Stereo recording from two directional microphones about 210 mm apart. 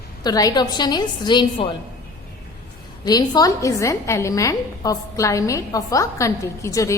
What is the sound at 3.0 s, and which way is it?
A woman's voice, 20° left (ahead or behind).